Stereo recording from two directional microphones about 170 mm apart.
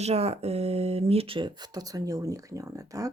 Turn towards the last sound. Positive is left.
turn(degrees=-20)  # may be behind; listen again after turning